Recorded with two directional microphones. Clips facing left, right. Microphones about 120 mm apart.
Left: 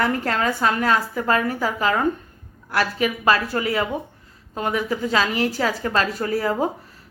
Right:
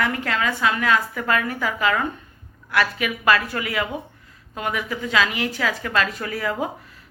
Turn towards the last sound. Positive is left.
turn(degrees=35)  # may be behind; listen again after turning